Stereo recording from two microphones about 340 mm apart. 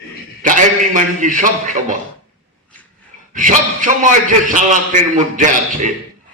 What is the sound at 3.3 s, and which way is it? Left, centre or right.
A man's voice, right.